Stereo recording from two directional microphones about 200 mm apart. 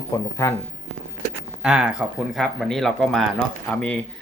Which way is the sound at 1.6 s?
5° right (ahead or behind).